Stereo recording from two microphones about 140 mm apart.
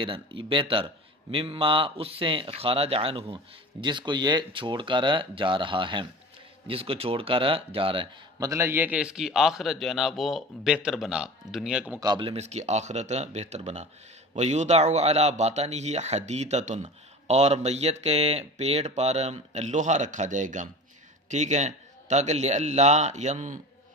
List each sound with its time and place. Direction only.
0.0 s speech: 35° right (ahead or behind)
8.4 s a man's voice: 20° right (ahead or behind); by 11.8 s 5° right (ahead or behind)
12.0 s speech: 30° right (ahead or behind)
12.3 s a man's voice: 50° right (ahead or behind)